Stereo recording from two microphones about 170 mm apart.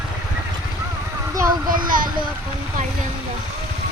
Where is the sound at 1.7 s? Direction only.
55° right (ahead or behind).